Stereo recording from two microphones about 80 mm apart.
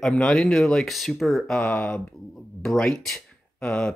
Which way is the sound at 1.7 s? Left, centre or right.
Centre.